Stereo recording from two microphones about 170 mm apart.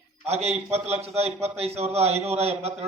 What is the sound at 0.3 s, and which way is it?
A man's voice, 40° right (ahead or behind).